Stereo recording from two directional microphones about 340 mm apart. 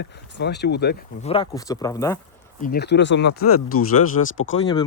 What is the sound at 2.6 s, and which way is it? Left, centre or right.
Speech, left.